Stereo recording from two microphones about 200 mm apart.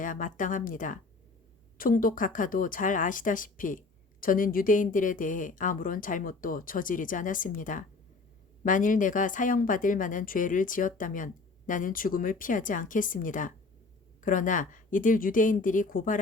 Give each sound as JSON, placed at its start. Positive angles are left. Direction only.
{"t": 0.0, "sound": "a woman's voice", "side_deg": 40}